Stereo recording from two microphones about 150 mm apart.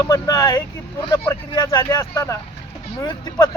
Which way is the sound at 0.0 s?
20° left (ahead or behind).